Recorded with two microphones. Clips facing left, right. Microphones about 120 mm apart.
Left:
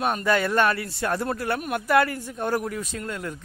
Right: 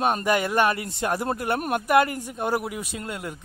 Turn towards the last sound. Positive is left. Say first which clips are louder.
# left 1 dB
turn(degrees=-15)  # may be behind; listen again after turning